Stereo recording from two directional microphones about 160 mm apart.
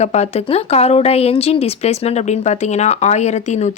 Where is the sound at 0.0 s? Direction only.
45° left (ahead or behind).